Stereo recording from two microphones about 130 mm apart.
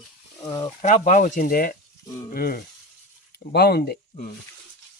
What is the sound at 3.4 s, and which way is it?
Speech, 85° left.